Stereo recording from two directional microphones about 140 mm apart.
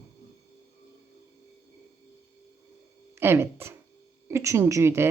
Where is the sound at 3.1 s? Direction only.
15° right (ahead or behind).